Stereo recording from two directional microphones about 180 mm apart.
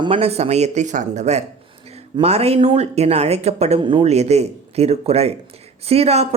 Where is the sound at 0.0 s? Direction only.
30° right (ahead or behind).